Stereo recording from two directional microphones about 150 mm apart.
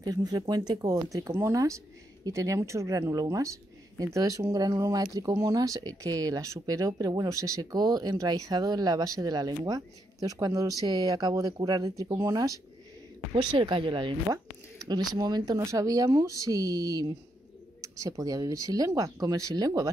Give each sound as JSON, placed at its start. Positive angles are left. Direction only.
{"t": 0.0, "sound": "speech", "side_deg": -25}